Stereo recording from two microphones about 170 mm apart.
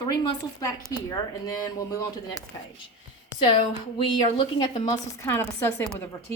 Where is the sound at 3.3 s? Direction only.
30° left (ahead or behind).